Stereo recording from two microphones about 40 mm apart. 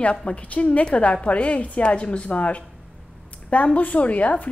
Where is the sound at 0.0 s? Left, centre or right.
Left.